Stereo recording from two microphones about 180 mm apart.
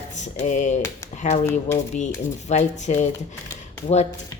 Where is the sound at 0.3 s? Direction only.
40° left (ahead or behind).